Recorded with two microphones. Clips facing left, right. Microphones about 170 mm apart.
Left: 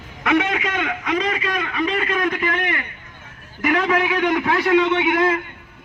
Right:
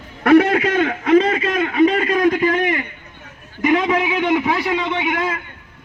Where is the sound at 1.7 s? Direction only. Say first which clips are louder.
Right 8 dB; 40° right (ahead or behind).